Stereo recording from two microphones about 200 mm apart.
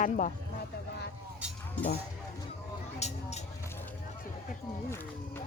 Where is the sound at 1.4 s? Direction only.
5° right (ahead or behind).